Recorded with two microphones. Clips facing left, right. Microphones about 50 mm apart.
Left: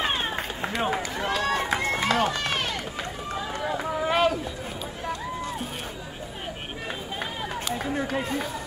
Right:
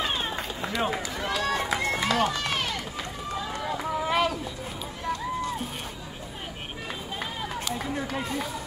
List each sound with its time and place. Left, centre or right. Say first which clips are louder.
0.0 s run: left 2 dB; left
3.7 s run: left 1 dB; left
7.6 s run: left 4 dB; left